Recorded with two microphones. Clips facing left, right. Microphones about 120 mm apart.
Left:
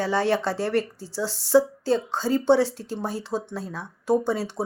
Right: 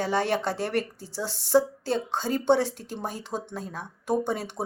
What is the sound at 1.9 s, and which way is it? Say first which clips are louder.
Speech: left 4 dB; 45° left (ahead or behind).